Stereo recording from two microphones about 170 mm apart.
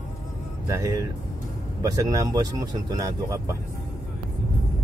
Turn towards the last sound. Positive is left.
turn(degrees=-20)  # may be behind; listen again after turning